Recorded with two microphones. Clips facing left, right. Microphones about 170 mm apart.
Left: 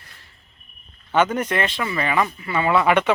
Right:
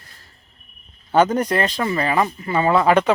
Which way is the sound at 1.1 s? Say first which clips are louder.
Right 3 dB; 35° right (ahead or behind).